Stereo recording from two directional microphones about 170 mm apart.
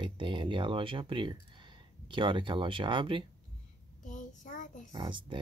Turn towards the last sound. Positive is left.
turn(degrees=-30)  # may be behind; listen again after turning